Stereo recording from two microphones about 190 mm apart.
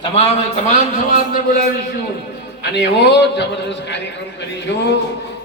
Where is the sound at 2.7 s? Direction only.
65° left (ahead or behind).